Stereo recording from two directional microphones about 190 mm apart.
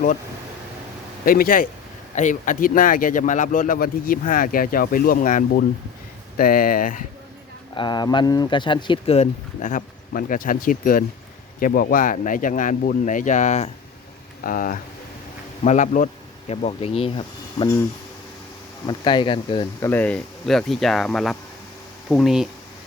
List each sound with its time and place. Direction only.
1.2 s speech: 50° left (ahead or behind)
7.8 s speech: 20° left (ahead or behind)
18.9 s speech: 25° left (ahead or behind)
19.8 s speech: 10° left (ahead or behind)